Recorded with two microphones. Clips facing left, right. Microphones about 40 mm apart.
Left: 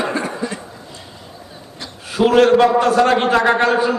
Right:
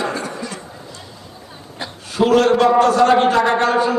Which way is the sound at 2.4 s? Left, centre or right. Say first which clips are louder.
Left 1 dB; centre.